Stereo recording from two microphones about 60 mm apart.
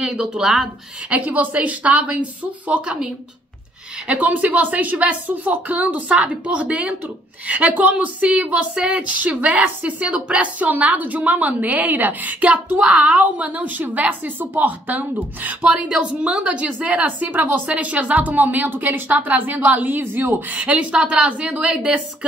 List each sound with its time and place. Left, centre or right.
0.0 s speech: centre
1.1 s a woman's voice: right
4.1 s a woman's voice: right
15.6 s a woman's voice: centre